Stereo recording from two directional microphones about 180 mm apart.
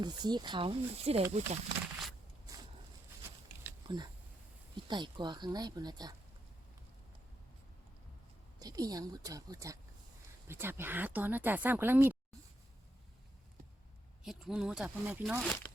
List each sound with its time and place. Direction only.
0.0 s speech: 25° right (ahead or behind)
2.5 s a sound: 20° right (ahead or behind)
3.8 s speech: 25° right (ahead or behind)
8.5 s speech: 20° right (ahead or behind)
14.3 s speech: 5° right (ahead or behind)